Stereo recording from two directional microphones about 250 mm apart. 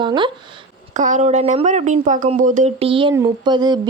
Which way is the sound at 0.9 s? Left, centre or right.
Right.